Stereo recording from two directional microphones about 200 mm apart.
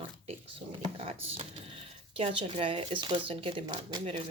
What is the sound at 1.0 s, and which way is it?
Speech, 30° right (ahead or behind).